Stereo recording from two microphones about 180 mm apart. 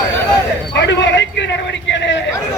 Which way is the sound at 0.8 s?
80° left.